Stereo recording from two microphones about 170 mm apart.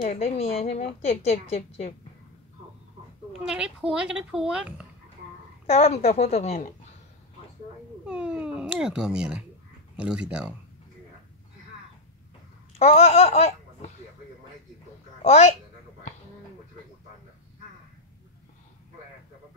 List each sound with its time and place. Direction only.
0.1 s a woman's voice: 35° left (ahead or behind)
3.3 s a woman's voice: 5° right (ahead or behind)
5.7 s a woman's voice: 40° left (ahead or behind)
8.0 s cat: 5° right (ahead or behind)
9.9 s a woman's voice: 5° right (ahead or behind)
12.7 s speech: 40° left (ahead or behind)
15.2 s a woman's voice: 40° left (ahead or behind)